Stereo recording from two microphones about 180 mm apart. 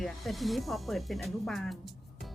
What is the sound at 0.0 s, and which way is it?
Speech, centre (ahead or behind).